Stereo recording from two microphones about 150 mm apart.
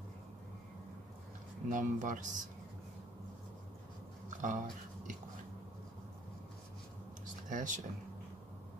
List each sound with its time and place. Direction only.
1.7 s speech: 60° right (ahead or behind)
4.4 s speech: 60° right (ahead or behind)
7.4 s speech: 60° right (ahead or behind)